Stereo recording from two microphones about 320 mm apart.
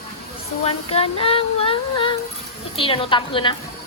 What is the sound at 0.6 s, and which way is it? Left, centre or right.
Music, centre.